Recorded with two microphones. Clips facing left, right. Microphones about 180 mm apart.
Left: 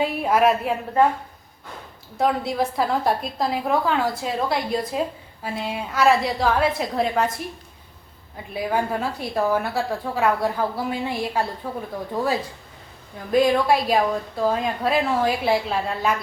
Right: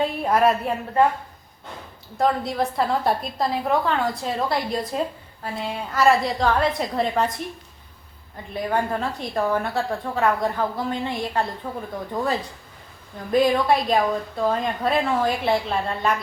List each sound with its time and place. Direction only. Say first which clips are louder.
0.0 s a woman's voice: even; 5° left (ahead or behind)
2.1 s a woman's voice: even; centre (ahead or behind)
8.5 s a woman's voice: even; 5° left (ahead or behind)